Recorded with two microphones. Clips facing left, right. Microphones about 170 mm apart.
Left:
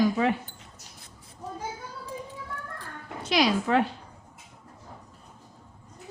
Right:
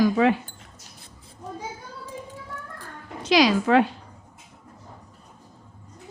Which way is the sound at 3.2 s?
90° right.